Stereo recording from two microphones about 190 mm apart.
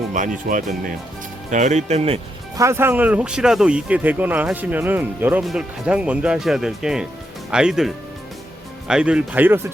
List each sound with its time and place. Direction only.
0.1 s speech: 40° right (ahead or behind)
2.6 s speech: 15° right (ahead or behind)